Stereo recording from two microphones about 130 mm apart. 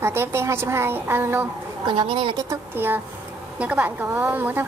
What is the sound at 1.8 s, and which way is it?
Speech, 35° right (ahead or behind).